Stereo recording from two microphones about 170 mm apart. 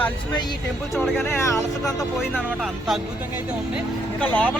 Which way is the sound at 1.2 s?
15° left (ahead or behind).